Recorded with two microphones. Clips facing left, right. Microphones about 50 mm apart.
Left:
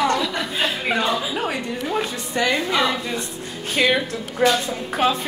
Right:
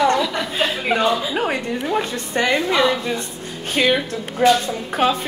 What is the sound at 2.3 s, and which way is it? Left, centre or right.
Speech, right.